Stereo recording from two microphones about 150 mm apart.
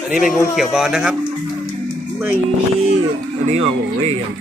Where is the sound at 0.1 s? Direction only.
Centre (ahead or behind).